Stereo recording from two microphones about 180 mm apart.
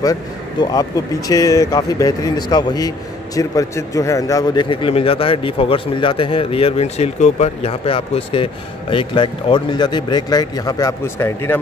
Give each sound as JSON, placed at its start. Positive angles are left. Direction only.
{"t": 0.0, "sound": "a man's voice", "side_deg": 20}